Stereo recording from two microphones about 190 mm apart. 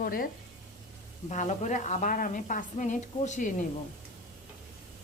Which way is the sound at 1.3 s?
40° left (ahead or behind).